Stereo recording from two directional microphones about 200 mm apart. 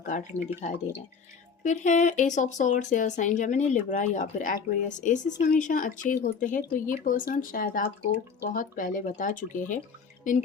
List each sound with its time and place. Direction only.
0.0 s speech: 40° left (ahead or behind)